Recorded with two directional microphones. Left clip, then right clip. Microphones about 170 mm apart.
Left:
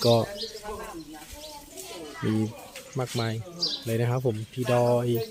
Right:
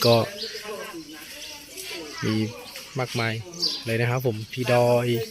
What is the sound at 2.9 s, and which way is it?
Speech, 5° left (ahead or behind).